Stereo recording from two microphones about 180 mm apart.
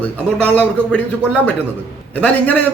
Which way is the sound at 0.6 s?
5° left (ahead or behind).